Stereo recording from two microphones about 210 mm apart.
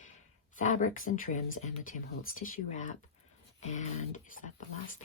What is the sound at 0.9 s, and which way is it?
Speech, 40° left (ahead or behind).